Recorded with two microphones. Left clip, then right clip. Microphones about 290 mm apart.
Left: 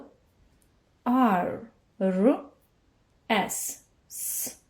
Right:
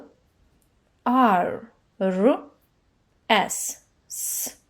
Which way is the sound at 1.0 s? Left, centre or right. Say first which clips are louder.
Right 5 dB; right.